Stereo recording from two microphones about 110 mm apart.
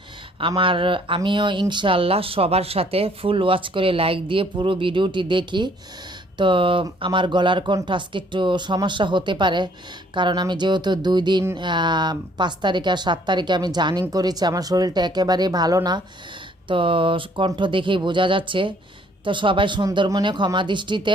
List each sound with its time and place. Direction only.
0.3 s speech: 50° right (ahead or behind)
16.6 s speech: 50° right (ahead or behind)